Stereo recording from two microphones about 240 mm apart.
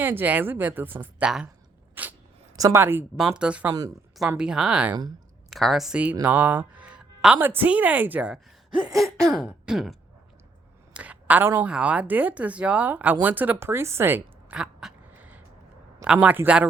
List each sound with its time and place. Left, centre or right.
0.0 s speech: centre
2.0 s a sound: centre
2.6 s a woman's voice: centre